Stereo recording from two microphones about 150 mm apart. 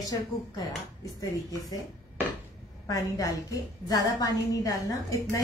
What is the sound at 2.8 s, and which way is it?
A woman's voice, 20° left (ahead or behind).